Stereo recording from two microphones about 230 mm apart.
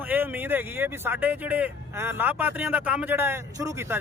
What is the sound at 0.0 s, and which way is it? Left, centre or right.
Speech, centre.